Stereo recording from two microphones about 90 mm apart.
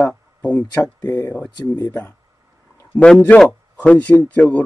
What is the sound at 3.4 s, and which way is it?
A man's voice, 15° left (ahead or behind).